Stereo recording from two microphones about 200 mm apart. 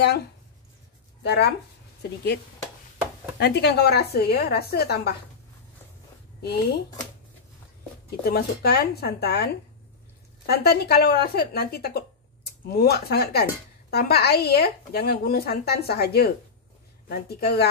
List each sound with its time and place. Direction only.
1.2 s speech: 55° left (ahead or behind)
3.3 s a woman's voice: 55° left (ahead or behind)
6.4 s a woman's voice: 55° left (ahead or behind)
8.2 s a woman's voice: 50° left (ahead or behind)